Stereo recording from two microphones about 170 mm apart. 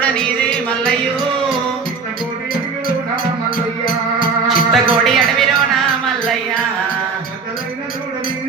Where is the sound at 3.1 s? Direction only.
55° left (ahead or behind).